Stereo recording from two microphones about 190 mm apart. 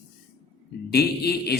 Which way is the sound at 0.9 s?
55° left (ahead or behind).